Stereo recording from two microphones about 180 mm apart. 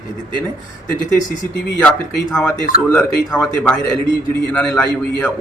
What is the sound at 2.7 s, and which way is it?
Speech, 45° left (ahead or behind).